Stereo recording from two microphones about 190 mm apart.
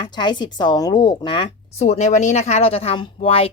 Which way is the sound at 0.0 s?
25° left (ahead or behind).